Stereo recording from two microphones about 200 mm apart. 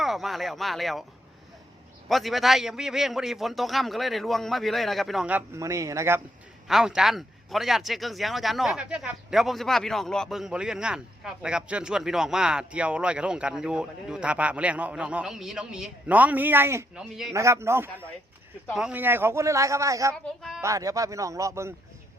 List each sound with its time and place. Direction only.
0.0 s speech: centre (ahead or behind)
2.0 s speech: centre (ahead or behind)
6.7 s speech: centre (ahead or behind)
17.3 s speech: 15° right (ahead or behind)